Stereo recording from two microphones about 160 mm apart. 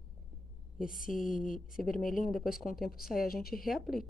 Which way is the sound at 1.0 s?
55° left (ahead or behind).